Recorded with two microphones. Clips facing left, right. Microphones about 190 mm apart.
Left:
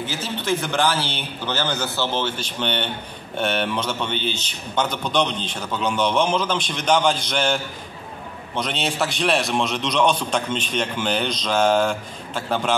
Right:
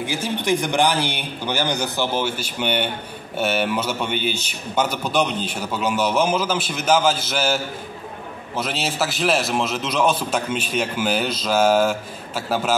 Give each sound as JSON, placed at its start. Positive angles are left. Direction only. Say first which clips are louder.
{"t": 0.0, "sound": "a man's voice", "louder": "right 3 dB", "side_deg": -10}